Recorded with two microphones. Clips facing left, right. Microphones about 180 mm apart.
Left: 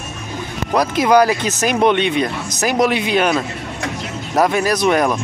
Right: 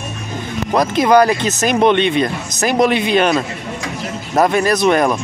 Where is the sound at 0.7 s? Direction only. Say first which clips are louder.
Right 1 dB; 5° left (ahead or behind).